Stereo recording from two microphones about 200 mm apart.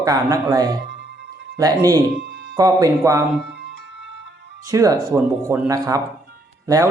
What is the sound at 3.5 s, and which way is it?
Music, 60° right (ahead or behind).